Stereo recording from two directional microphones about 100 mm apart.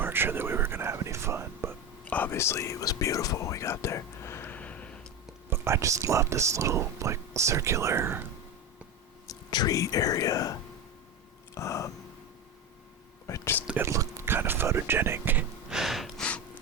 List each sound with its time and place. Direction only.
0.0 s whispering: 20° right (ahead or behind)
2.0 s speech: 15° left (ahead or behind)
5.5 s speech: 30° right (ahead or behind)
9.2 s speech: 40° left (ahead or behind)
11.5 s a sound: 30° left (ahead or behind)
13.2 s speech: 30° left (ahead or behind)
13.7 s speech: 30° right (ahead or behind)
15.7 s gasp: 5° right (ahead or behind)